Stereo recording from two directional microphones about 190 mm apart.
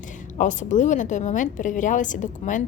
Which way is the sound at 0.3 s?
40° left (ahead or behind).